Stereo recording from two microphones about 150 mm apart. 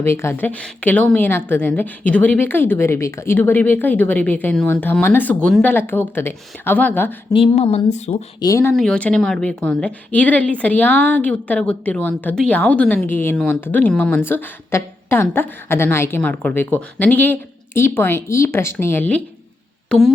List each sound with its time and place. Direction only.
0.0 s a woman's voice: 15° left (ahead or behind)
7.3 s speech: 40° left (ahead or behind)
8.4 s speech: 20° left (ahead or behind)
8.7 s a woman's voice: 5° left (ahead or behind)